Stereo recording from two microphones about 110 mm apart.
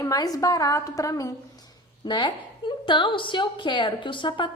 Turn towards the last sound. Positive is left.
turn(degrees=45)  # may be behind; listen again after turning